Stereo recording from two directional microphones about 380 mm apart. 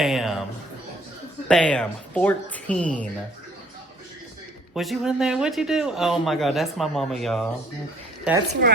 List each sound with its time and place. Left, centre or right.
0.0 s a man's voice: centre
1.5 s a man's voice: centre
4.7 s a man's voice: centre
8.6 s a woman's voice: right